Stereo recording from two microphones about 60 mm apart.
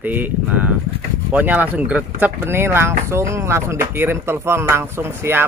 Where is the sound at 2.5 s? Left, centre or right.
Right.